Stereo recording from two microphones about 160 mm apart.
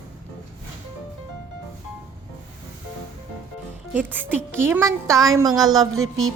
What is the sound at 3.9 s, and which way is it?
A woman's voice, 10° right (ahead or behind).